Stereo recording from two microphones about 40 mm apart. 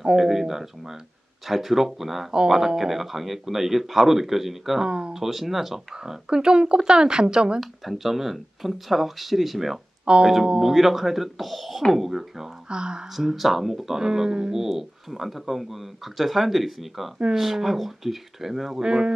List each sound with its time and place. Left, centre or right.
0.0 s a man's voice: centre
4.8 s speech: right
5.1 s speech: centre
5.9 s speech: centre
7.8 s speech: centre
10.0 s speech: right
10.6 s a man's voice: centre
12.6 s speech: right
13.1 s a man's voice: centre
18.8 s speech: centre